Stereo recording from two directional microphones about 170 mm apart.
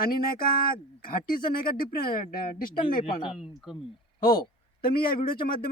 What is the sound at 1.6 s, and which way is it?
Speech, 60° left (ahead or behind).